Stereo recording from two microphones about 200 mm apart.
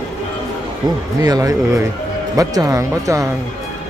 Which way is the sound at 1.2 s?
15° right (ahead or behind).